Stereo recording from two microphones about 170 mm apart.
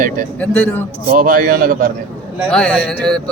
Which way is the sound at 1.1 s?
55° right (ahead or behind).